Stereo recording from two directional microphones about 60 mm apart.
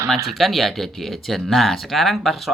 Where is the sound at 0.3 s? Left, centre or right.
Centre.